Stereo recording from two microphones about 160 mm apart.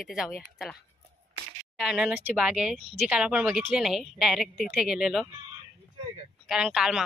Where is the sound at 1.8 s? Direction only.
5° right (ahead or behind).